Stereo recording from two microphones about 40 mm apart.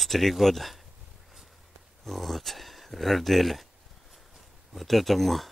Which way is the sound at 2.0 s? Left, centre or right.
Centre.